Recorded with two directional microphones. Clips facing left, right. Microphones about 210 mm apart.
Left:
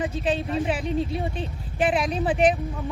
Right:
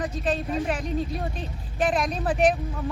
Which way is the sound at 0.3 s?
Centre (ahead or behind).